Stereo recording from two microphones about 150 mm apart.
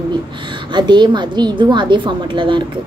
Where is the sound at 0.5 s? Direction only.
30° right (ahead or behind).